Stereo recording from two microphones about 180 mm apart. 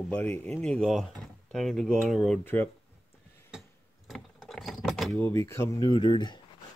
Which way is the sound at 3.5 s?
Centre (ahead or behind).